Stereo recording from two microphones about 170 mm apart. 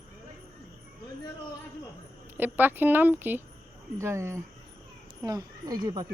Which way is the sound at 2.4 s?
10° right (ahead or behind).